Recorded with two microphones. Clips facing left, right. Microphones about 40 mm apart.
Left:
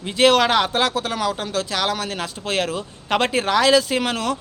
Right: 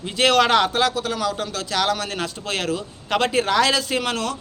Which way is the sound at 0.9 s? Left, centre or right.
Left.